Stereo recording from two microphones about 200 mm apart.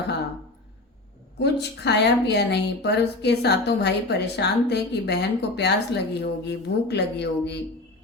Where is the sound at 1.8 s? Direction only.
55° left (ahead or behind).